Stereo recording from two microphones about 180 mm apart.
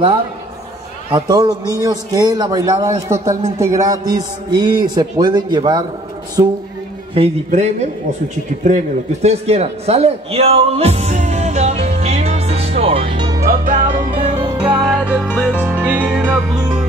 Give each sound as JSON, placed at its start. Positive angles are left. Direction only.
{"t": 1.1, "sound": "a man's voice", "side_deg": -25}
{"t": 7.2, "sound": "a man's voice", "side_deg": -40}
{"t": 13.4, "sound": "music", "side_deg": -50}
{"t": 14.6, "sound": "music", "side_deg": -5}
{"t": 15.2, "sound": "music", "side_deg": 10}
{"t": 15.6, "sound": "music", "side_deg": -10}
{"t": 16.5, "sound": "music", "side_deg": -20}